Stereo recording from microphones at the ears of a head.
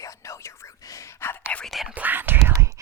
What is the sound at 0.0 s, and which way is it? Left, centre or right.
Whispering, left.